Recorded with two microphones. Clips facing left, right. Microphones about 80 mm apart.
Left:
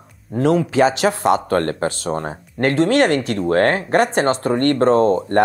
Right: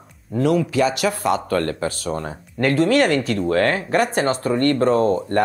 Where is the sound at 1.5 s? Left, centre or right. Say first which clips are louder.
Left 3 dB; left.